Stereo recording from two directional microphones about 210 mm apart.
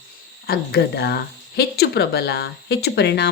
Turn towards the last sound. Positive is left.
turn(degrees=55)  # may be behind; listen again after turning